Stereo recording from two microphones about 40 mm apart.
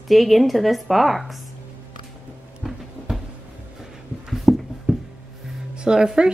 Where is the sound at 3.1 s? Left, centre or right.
Centre.